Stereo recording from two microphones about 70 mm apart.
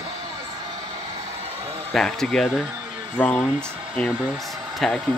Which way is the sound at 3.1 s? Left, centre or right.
Centre.